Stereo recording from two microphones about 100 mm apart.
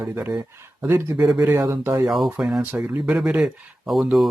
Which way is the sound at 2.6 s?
20° right (ahead or behind).